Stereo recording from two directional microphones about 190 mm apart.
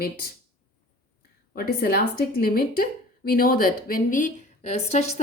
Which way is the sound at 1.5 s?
55° left (ahead or behind).